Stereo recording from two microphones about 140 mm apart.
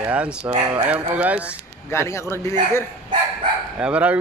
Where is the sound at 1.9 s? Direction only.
20° left (ahead or behind).